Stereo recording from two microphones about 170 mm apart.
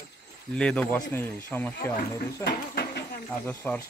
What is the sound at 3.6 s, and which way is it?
Speech, 10° left (ahead or behind).